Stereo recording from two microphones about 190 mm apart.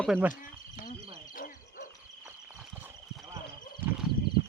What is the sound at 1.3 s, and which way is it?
Dog, 45° left (ahead or behind).